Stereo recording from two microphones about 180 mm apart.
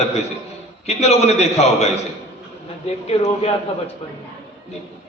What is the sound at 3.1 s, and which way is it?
Speech, 35° left (ahead or behind).